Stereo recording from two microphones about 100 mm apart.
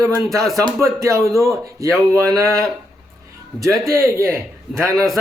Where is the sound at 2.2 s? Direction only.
30° right (ahead or behind).